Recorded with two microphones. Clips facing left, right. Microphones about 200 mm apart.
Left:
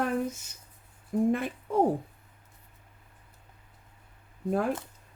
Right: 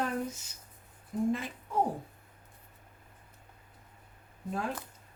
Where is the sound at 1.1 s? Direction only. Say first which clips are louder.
Left 5 dB; 60° left (ahead or behind).